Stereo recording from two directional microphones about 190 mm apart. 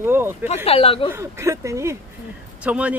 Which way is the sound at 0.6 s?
30° left (ahead or behind).